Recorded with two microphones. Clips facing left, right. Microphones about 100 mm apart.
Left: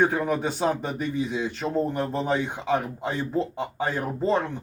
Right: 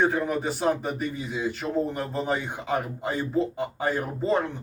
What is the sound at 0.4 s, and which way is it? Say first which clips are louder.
Speech: even; 5° right (ahead or behind).